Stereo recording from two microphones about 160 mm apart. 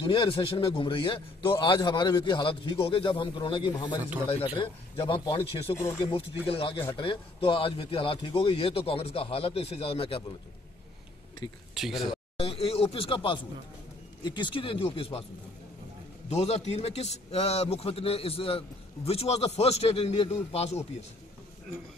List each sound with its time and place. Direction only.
0.0 s a man's voice: 30° left (ahead or behind)
11.7 s speech: centre (ahead or behind)
12.4 s a man's voice: 40° left (ahead or behind)
16.3 s a man's voice: 40° left (ahead or behind)